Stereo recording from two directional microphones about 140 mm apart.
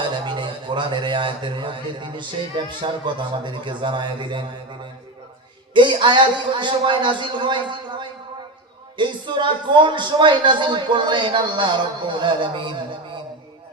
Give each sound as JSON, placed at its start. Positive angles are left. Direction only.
{"t": 0.0, "sound": "a man's voice", "side_deg": -35}